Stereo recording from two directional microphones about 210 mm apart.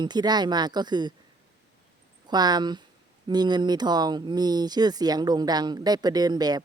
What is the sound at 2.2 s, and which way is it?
A woman's voice, 20° right (ahead or behind).